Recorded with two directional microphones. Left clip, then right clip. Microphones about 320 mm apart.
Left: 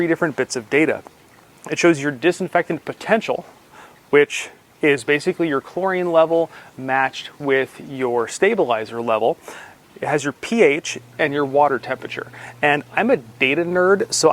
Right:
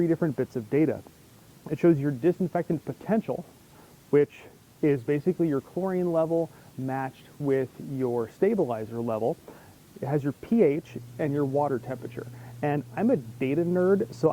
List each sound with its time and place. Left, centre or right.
0.0 s speech: centre
6.8 s speech: centre